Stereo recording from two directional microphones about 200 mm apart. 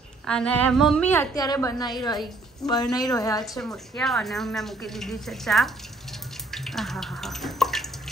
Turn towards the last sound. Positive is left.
turn(degrees=0)  # may be behind; listen again after turning